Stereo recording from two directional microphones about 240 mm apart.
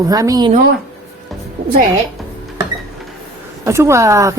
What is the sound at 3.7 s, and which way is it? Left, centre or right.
Speech, centre.